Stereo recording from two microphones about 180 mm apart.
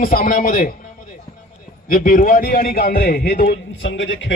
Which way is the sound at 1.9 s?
50° left (ahead or behind).